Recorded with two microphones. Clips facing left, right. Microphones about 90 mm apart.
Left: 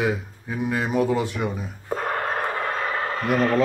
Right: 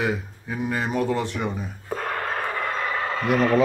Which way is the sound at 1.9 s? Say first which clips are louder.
Left 2 dB; 25° left (ahead or behind).